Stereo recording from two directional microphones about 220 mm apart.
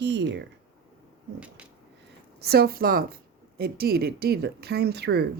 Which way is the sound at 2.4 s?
45° right (ahead or behind).